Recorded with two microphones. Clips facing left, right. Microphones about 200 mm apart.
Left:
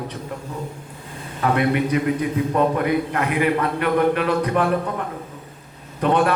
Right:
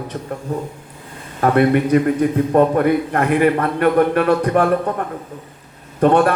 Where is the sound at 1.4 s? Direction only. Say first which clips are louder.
Right 5 dB; 45° right (ahead or behind).